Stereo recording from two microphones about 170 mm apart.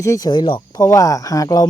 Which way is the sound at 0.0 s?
20° left (ahead or behind).